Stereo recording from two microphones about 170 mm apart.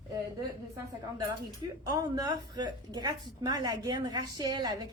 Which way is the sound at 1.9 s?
20° right (ahead or behind).